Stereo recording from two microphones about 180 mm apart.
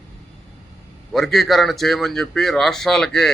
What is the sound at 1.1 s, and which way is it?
A man's voice, centre (ahead or behind).